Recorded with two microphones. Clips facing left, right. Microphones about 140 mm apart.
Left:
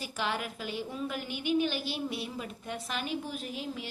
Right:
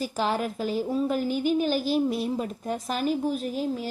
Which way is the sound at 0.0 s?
40° right (ahead or behind).